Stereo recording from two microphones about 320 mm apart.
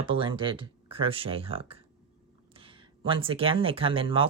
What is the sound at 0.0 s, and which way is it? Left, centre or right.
Speech, centre.